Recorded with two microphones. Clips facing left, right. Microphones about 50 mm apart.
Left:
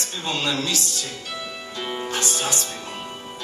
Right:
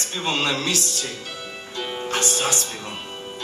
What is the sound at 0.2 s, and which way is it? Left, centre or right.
Speech, right.